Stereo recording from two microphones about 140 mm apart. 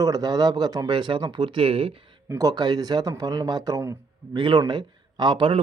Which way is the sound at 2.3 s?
25° right (ahead or behind).